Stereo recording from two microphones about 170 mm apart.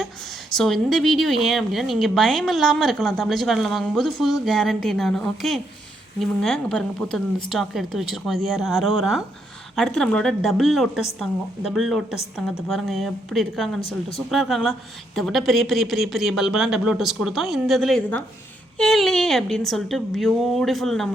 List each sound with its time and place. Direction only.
0.5 s speech: centre (ahead or behind)